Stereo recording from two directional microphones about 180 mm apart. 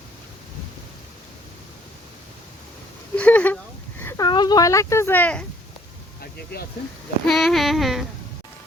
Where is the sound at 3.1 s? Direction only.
10° left (ahead or behind).